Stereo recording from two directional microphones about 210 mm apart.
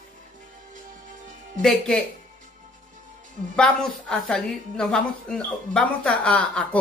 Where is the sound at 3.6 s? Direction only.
5° left (ahead or behind).